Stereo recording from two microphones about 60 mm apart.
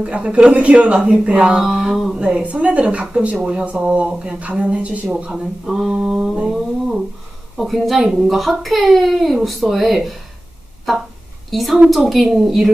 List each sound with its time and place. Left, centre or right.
0.0 s speech: centre
2.1 s a woman's voice: centre
5.3 s speech: centre
7.5 s a child's voice: centre
11.5 s a child's voice: centre